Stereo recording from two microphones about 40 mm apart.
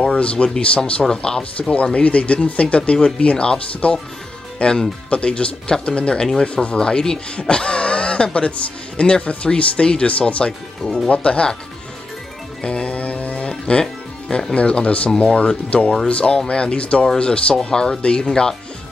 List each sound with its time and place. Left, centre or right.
0.0 s speech: left
12.6 s music: left
14.5 s speech: left